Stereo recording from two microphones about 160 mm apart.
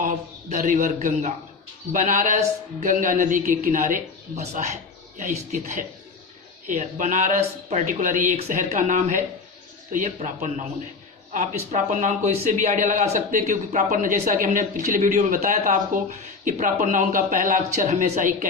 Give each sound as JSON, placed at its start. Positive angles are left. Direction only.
{"t": 0.0, "sound": "a man's voice", "side_deg": -50}